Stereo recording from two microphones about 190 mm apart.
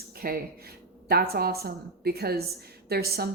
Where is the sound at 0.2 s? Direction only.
50° right (ahead or behind).